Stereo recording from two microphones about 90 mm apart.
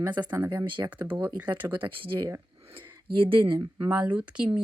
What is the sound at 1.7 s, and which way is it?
Speech, 70° right (ahead or behind).